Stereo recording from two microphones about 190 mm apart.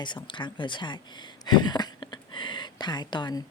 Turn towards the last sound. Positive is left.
turn(degrees=20)  # may be behind; listen again after turning